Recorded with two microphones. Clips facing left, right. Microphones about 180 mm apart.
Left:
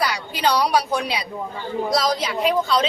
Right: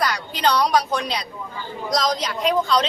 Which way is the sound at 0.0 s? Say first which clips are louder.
Even; 10° left (ahead or behind).